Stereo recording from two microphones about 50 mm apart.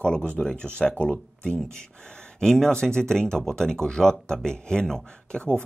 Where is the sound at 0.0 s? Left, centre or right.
Left.